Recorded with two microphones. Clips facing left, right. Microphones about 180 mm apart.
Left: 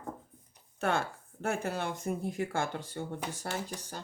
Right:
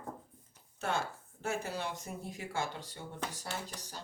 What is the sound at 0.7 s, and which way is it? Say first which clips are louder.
Speech: left 4 dB; 60° left (ahead or behind).